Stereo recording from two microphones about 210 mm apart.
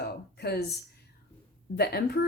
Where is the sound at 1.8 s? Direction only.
50° left (ahead or behind).